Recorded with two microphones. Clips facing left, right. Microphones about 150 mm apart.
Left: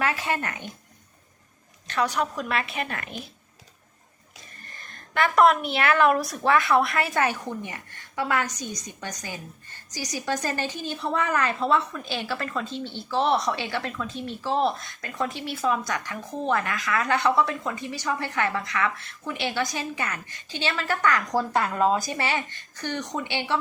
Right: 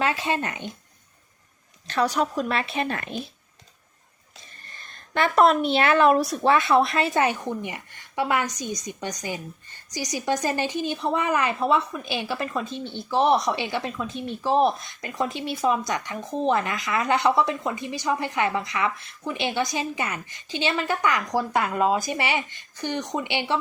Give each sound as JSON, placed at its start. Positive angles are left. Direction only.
{"t": 0.0, "sound": "a woman's voice", "side_deg": -25}
{"t": 1.9, "sound": "a woman's voice", "side_deg": -30}
{"t": 4.8, "sound": "a woman's voice", "side_deg": -30}